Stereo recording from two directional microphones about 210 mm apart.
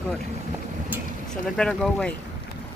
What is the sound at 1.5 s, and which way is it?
Speech, 5° left (ahead or behind).